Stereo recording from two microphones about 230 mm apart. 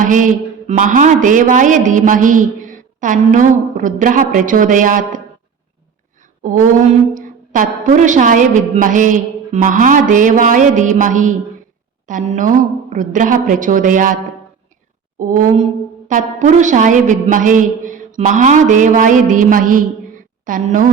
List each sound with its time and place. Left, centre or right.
0.0 s a man's voice: right
6.4 s a man's voice: right
15.2 s a man's voice: right